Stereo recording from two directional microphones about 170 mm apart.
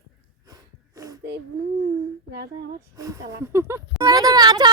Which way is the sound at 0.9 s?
20° right (ahead or behind).